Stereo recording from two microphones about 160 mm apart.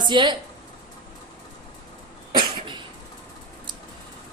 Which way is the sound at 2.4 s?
30° right (ahead or behind).